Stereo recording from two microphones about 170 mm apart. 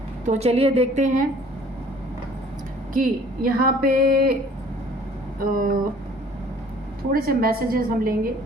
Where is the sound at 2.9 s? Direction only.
55° right (ahead or behind).